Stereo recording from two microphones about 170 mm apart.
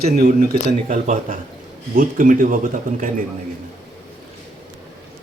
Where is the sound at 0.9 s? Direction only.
55° right (ahead or behind).